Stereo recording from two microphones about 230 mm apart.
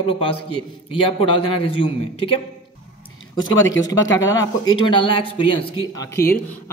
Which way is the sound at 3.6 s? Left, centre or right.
Left.